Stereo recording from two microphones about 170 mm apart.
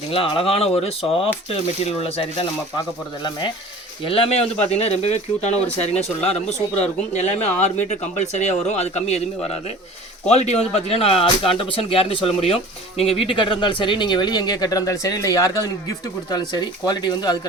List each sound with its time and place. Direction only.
0.1 s speech: 30° left (ahead or behind)